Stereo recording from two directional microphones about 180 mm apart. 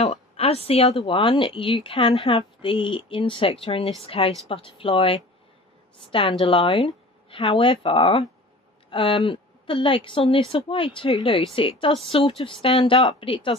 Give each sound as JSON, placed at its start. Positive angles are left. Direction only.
{"t": 0.0, "sound": "speech", "side_deg": 35}
{"t": 6.4, "sound": "speech", "side_deg": 30}